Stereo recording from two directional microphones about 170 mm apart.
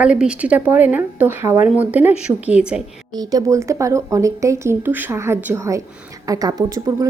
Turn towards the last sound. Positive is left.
turn(degrees=-20)  # may be behind; listen again after turning